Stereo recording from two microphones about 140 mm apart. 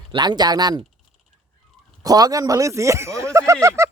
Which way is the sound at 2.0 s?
25° right (ahead or behind).